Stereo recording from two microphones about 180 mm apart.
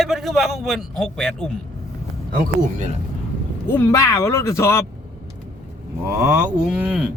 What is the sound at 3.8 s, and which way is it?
A man's voice, 15° left (ahead or behind).